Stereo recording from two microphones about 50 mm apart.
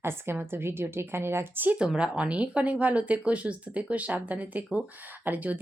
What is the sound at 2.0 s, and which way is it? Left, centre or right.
A woman's voice, right.